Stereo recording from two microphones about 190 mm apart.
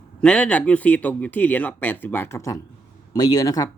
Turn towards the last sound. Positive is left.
turn(degrees=20)  # may be behind; listen again after turning